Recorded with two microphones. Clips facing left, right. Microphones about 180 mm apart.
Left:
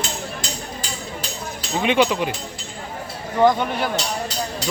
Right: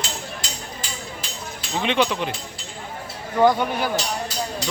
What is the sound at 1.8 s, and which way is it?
Speech, 5° left (ahead or behind).